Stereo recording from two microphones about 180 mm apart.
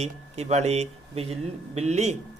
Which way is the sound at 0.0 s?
35° right (ahead or behind).